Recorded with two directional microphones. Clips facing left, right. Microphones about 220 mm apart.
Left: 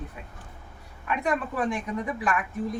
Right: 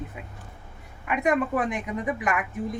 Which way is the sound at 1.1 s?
20° right (ahead or behind).